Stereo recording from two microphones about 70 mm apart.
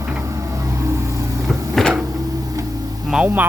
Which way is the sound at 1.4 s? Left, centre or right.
Centre.